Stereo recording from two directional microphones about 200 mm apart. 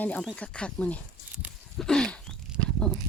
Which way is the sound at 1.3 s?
Centre (ahead or behind).